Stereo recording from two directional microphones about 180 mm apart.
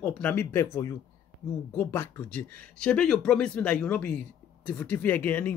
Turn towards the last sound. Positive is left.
turn(degrees=10)  # may be behind; listen again after turning